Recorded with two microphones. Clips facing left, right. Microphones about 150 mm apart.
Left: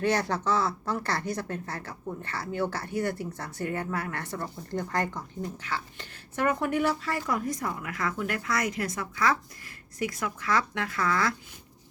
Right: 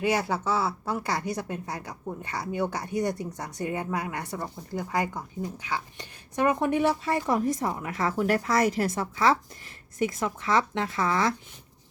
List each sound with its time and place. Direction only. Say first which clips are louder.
0.0 s speech: even; 10° right (ahead or behind)